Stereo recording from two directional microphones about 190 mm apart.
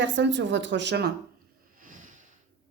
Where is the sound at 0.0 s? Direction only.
70° right (ahead or behind).